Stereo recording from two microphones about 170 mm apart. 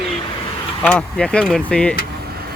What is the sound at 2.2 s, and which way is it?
Vehicle, 65° right (ahead or behind).